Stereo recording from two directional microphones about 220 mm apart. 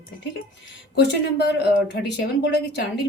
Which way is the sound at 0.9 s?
50° left (ahead or behind).